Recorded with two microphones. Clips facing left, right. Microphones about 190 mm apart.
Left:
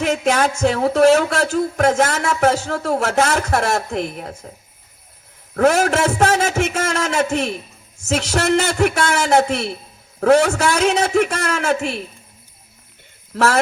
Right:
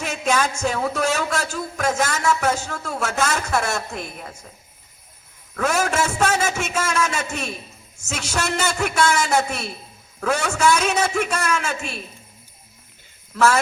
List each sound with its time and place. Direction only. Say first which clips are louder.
0.0 s a man's voice: left 5 dB; 60° left (ahead or behind)
5.5 s a man's voice: left 6 dB; 60° left (ahead or behind)
13.3 s a man's voice: left 1 dB; 60° left (ahead or behind)